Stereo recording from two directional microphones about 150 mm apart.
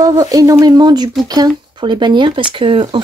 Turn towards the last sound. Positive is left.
turn(degrees=-35)  # may be behind; listen again after turning